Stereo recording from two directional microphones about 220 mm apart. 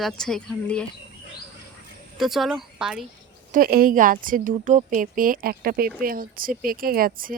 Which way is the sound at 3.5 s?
40° right (ahead or behind).